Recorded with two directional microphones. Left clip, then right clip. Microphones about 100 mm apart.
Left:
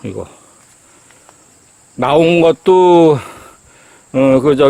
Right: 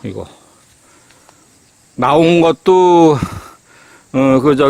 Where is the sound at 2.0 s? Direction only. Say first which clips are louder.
Even; 25° right (ahead or behind).